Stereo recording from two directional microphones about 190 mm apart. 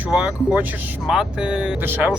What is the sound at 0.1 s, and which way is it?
Speech, 5° right (ahead or behind).